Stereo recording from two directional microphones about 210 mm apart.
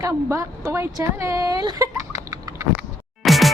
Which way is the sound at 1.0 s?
15° right (ahead or behind).